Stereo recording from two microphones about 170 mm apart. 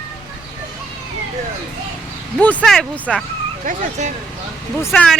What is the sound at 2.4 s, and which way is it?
Speech, 10° left (ahead or behind).